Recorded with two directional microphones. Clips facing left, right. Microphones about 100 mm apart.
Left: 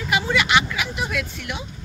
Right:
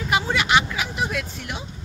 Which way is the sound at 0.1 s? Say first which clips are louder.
Even; 35° right (ahead or behind).